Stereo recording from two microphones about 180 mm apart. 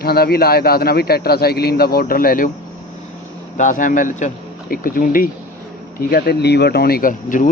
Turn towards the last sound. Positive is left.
turn(degrees=45)  # may be behind; listen again after turning